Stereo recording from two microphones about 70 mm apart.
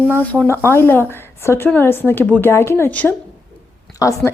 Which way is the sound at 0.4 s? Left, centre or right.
Left.